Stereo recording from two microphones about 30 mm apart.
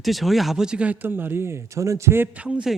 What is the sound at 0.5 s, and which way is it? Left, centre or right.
Speech, right.